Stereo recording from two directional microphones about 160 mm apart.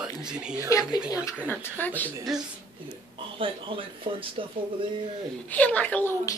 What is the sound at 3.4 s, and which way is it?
Speech, 35° right (ahead or behind).